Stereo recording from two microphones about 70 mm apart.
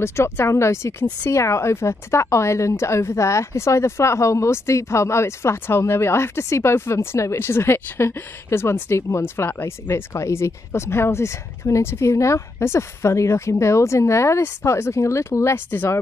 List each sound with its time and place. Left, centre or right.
0.0 s a woman's voice: left